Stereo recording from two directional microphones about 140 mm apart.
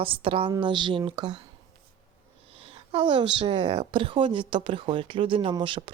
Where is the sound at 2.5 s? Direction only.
40° right (ahead or behind).